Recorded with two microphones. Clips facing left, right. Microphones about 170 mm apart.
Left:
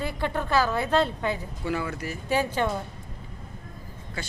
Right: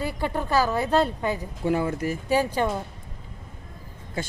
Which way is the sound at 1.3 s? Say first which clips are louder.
Right 4 dB; 45° right (ahead or behind).